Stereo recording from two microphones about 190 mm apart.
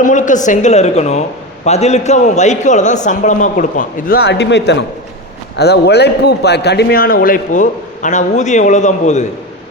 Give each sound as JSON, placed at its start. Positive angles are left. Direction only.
{"t": 0.0, "sound": "a man's voice", "side_deg": 40}